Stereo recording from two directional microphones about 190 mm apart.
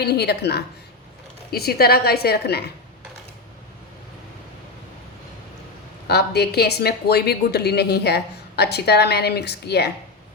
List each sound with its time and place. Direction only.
0.0 s speech: 55° left (ahead or behind)
6.1 s speech: 60° left (ahead or behind)